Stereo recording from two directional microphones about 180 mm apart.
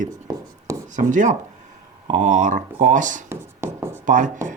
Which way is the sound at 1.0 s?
45° right (ahead or behind).